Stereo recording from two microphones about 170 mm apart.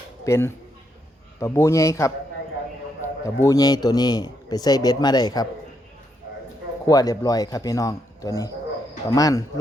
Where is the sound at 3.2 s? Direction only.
20° left (ahead or behind).